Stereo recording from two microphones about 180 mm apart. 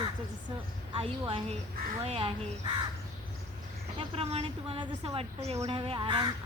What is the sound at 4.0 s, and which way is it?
Speech, 30° right (ahead or behind).